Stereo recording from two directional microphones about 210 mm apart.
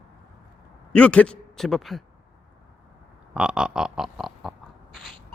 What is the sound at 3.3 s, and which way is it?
Oink, 5° right (ahead or behind).